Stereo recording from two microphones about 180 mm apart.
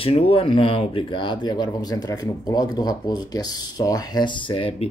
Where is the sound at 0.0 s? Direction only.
30° left (ahead or behind).